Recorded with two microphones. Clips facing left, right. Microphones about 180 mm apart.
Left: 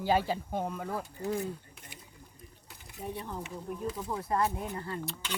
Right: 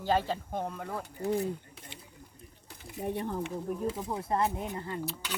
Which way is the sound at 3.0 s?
55° right (ahead or behind).